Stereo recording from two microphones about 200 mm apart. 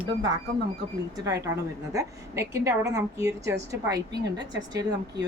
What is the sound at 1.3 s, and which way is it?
A woman's voice, 15° right (ahead or behind).